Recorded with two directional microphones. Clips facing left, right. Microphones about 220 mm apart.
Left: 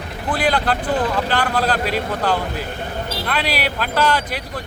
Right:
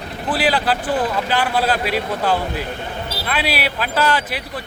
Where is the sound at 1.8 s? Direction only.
45° left (ahead or behind).